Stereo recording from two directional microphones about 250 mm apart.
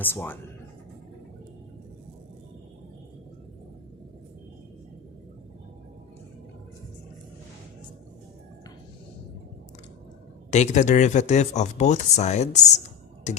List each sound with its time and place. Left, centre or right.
0.0 s speech: centre
10.5 s speech: left